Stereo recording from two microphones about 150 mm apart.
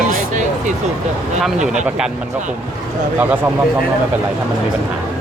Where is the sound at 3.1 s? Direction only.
15° right (ahead or behind).